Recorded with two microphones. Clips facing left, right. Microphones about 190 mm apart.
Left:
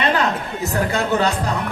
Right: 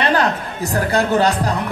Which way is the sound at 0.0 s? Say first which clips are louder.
Right 2 dB; 40° right (ahead or behind).